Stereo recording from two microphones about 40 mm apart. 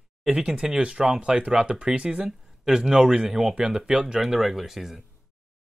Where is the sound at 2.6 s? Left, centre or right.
Centre.